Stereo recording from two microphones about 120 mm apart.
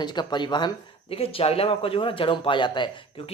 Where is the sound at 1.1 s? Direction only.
50° left (ahead or behind).